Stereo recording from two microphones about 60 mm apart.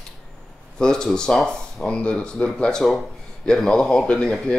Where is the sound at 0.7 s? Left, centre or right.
Centre.